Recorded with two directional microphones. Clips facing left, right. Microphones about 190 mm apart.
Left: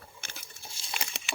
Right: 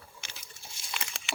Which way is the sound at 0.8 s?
30° left (ahead or behind).